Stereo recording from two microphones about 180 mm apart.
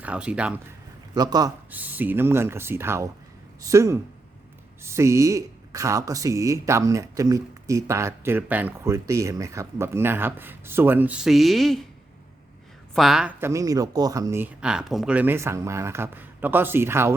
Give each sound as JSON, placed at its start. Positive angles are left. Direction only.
{"t": 0.0, "sound": "speech", "side_deg": -5}
{"t": 1.1, "sound": "a man's voice", "side_deg": -20}
{"t": 1.7, "sound": "speech", "side_deg": -10}
{"t": 12.9, "sound": "speech", "side_deg": 0}
{"t": 13.5, "sound": "speech", "side_deg": -20}